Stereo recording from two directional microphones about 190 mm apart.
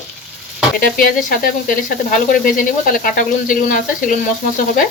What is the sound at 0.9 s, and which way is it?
Speech, 45° left (ahead or behind).